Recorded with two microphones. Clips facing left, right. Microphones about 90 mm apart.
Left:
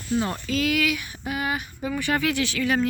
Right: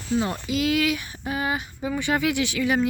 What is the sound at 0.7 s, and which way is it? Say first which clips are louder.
Speech: right 1 dB; 30° right (ahead or behind).